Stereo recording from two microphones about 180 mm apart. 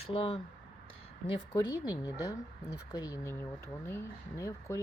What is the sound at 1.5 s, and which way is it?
Speech, 15° left (ahead or behind).